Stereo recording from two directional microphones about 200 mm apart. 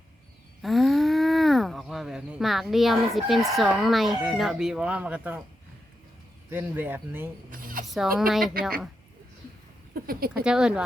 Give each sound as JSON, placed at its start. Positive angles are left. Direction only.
{"t": 0.6, "sound": "speech", "side_deg": 0}
{"t": 6.5, "sound": "speech", "side_deg": -10}
{"t": 7.5, "sound": "a sound", "side_deg": -45}
{"t": 8.3, "sound": "speech", "side_deg": 0}
{"t": 9.9, "sound": "speech", "side_deg": -50}
{"t": 10.4, "sound": "speech", "side_deg": -5}